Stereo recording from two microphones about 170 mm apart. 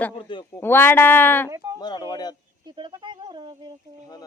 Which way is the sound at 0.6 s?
10° left (ahead or behind).